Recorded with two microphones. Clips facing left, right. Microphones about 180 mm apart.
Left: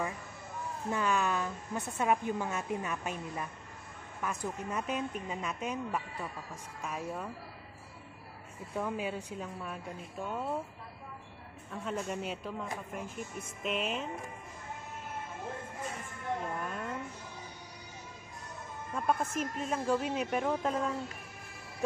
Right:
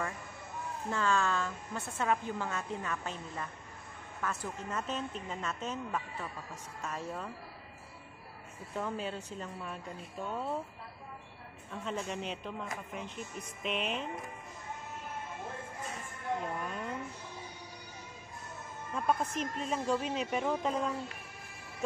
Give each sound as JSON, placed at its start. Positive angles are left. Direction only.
{"t": 0.8, "sound": "a woman's voice", "side_deg": 15}
{"t": 8.7, "sound": "a woman's voice", "side_deg": 10}
{"t": 11.7, "sound": "speech", "side_deg": 5}
{"t": 16.5, "sound": "a sound", "side_deg": 0}
{"t": 18.9, "sound": "speech", "side_deg": 5}